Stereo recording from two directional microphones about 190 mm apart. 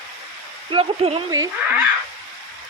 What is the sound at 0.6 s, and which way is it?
Speech, 30° right (ahead or behind).